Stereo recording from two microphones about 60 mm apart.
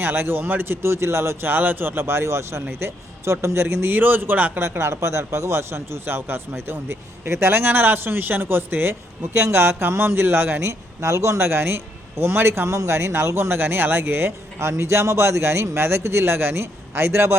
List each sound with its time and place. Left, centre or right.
0.0 s speech: right
1.5 s a man's voice: right
4.6 s speech: right
10.7 s speech: right